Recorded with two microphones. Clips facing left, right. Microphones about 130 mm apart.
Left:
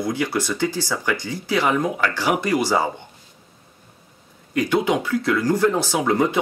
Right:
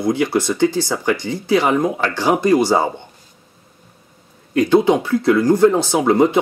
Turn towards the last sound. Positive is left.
turn(degrees=-20)  # may be behind; listen again after turning